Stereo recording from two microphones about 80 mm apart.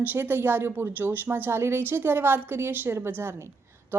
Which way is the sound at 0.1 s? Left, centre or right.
Right.